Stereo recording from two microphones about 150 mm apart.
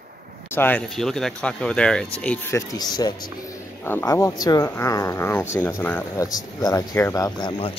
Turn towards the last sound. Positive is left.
turn(degrees=25)  # may be behind; listen again after turning